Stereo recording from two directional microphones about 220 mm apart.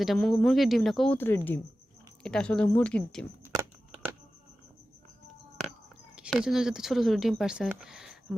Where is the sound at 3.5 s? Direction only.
15° right (ahead or behind).